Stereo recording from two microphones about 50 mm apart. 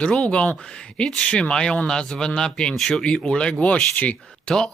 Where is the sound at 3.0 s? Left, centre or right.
Centre.